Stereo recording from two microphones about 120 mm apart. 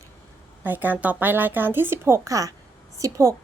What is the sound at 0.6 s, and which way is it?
A woman's voice, 15° right (ahead or behind).